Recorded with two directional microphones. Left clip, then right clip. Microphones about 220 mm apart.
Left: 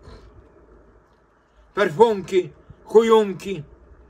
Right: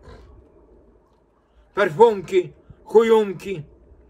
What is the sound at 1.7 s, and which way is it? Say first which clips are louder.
A man's voice: right 1 dB; 5° left (ahead or behind).